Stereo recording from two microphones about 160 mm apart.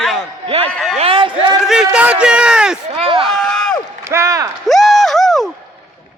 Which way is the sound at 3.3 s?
5° left (ahead or behind).